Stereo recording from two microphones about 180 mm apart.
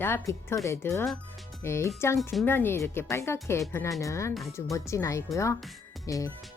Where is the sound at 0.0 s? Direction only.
15° left (ahead or behind).